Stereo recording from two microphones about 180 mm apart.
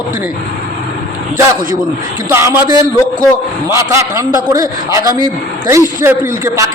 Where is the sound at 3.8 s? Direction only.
15° right (ahead or behind).